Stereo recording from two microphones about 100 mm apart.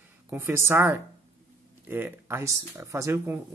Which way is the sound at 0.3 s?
20° right (ahead or behind).